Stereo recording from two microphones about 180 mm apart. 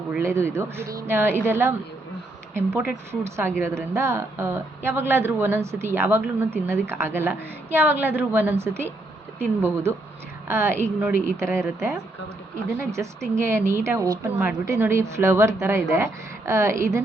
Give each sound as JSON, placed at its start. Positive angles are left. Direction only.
{"t": 0.1, "sound": "speech", "side_deg": -15}